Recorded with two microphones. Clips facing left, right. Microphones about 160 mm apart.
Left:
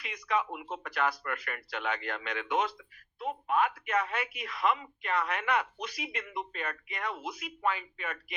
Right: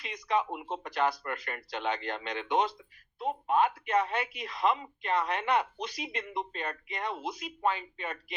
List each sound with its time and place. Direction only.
0.0 s speech: 25° right (ahead or behind)